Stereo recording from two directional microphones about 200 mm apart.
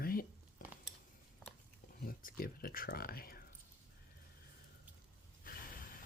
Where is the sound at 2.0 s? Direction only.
45° left (ahead or behind).